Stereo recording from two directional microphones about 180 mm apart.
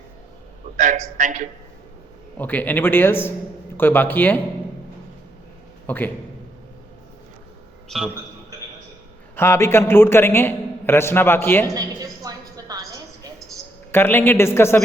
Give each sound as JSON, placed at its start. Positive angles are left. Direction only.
{"t": 0.8, "sound": "a man's voice", "side_deg": -45}
{"t": 2.4, "sound": "a man's voice", "side_deg": 10}
{"t": 5.8, "sound": "a man's voice", "side_deg": 10}
{"t": 7.9, "sound": "a man's voice", "side_deg": 0}
{"t": 9.3, "sound": "a man's voice", "side_deg": 15}
{"t": 11.7, "sound": "a sound", "side_deg": -20}
{"t": 13.9, "sound": "a man's voice", "side_deg": 10}